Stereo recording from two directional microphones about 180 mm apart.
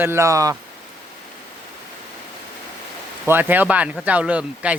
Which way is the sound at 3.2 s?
10° right (ahead or behind).